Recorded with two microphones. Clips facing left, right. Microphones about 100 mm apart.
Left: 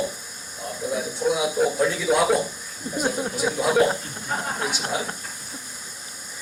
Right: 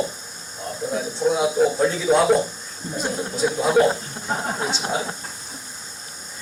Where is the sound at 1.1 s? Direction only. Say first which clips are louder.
Right 4 dB; 10° left (ahead or behind).